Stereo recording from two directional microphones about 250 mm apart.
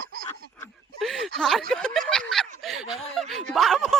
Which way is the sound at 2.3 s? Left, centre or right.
Centre.